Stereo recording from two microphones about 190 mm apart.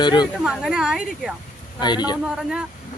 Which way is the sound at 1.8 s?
20° left (ahead or behind).